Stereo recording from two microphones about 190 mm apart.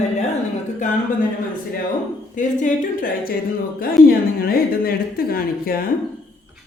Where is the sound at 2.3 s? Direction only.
45° left (ahead or behind).